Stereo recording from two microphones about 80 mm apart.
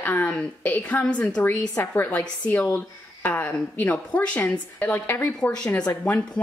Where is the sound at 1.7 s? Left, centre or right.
Left.